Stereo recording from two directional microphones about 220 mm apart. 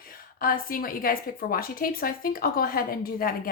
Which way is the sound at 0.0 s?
40° left (ahead or behind).